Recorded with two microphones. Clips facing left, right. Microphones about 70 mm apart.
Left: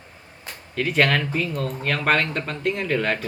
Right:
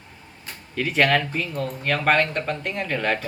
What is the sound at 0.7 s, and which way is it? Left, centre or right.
Speech, centre.